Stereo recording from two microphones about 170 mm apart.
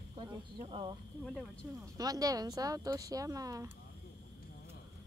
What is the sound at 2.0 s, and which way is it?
Speech, 20° right (ahead or behind).